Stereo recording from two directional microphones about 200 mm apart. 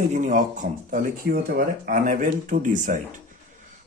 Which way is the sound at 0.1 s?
40° right (ahead or behind).